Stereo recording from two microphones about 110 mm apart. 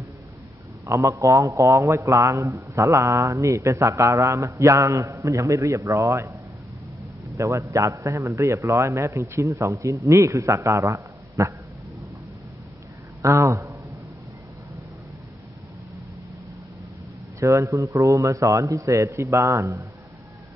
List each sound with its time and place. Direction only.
0.8 s a man's voice: 25° right (ahead or behind)
7.3 s a man's voice: 25° right (ahead or behind)
13.2 s a sound: 30° right (ahead or behind)
17.4 s a man's voice: 25° right (ahead or behind)